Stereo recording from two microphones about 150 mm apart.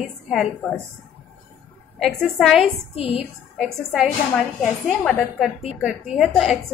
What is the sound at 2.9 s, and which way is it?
Speech, 40° left (ahead or behind).